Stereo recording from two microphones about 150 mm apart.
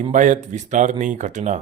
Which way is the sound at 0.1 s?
55° right (ahead or behind).